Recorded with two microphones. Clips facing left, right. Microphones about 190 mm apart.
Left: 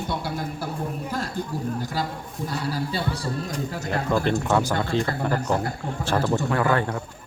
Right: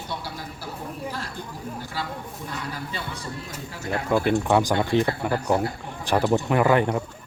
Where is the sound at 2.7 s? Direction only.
35° left (ahead or behind).